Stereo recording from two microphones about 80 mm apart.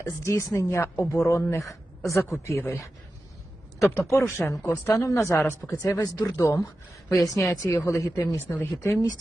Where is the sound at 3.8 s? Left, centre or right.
Left.